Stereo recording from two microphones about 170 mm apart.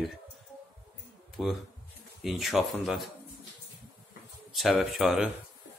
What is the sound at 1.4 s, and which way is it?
Speech, centre (ahead or behind).